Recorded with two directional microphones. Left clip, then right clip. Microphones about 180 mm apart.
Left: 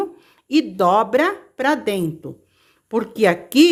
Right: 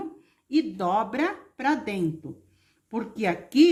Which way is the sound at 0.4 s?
50° left (ahead or behind).